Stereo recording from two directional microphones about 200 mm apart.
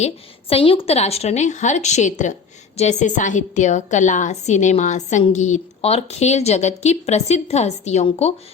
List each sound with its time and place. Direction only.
0.0 s a woman's voice: 30° left (ahead or behind)